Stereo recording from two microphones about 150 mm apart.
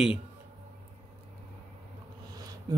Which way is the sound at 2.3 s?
25° right (ahead or behind).